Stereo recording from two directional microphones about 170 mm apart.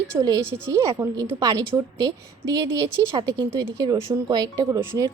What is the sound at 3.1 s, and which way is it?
Speech, 20° right (ahead or behind).